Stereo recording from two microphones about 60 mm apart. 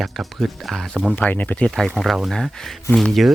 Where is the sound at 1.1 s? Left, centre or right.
Left.